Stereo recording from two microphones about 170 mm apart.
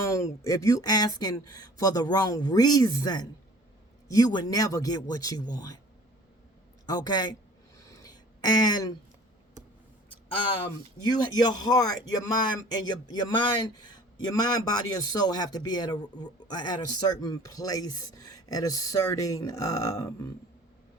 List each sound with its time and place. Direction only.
0.0 s a man's voice: 15° left (ahead or behind)
6.8 s a man's voice: 25° left (ahead or behind)
7.9 s a sound: 25° left (ahead or behind)
11.0 s a man's voice: 25° left (ahead or behind)